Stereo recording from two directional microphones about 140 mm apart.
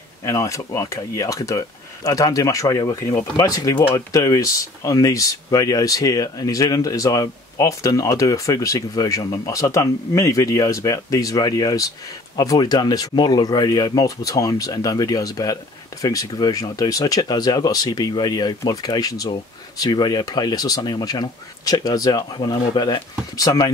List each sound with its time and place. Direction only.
0.2 s speech: 20° left (ahead or behind)